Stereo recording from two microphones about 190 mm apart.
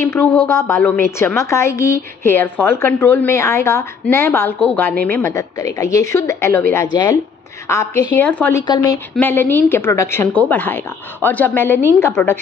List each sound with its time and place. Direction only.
0.0 s a woman's voice: 15° left (ahead or behind)
8.6 s a woman's voice: 20° left (ahead or behind)
9.1 s a woman's voice: 10° left (ahead or behind)